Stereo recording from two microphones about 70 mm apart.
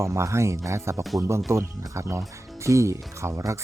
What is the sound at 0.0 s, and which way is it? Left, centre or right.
Speech, right.